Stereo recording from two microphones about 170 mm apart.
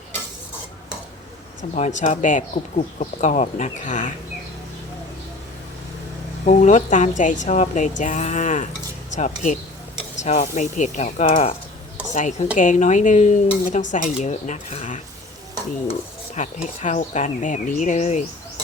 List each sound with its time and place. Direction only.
1.6 s stir: 45° left (ahead or behind)
6.4 s stir: 50° left (ahead or behind)